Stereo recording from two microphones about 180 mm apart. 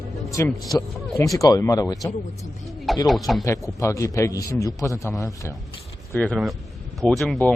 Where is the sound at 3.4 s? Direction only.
15° left (ahead or behind).